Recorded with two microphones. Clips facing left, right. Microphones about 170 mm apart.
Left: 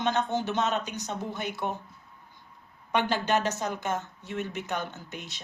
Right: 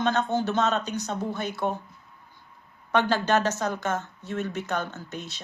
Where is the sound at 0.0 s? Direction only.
15° left (ahead or behind).